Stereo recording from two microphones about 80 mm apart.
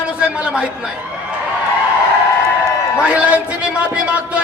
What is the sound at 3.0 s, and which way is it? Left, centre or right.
A man's voice, centre.